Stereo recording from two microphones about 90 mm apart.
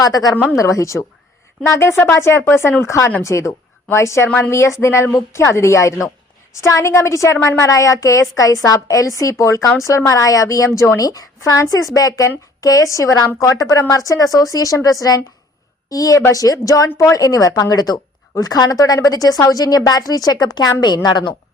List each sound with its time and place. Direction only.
0.0 s a woman's voice: 45° left (ahead or behind)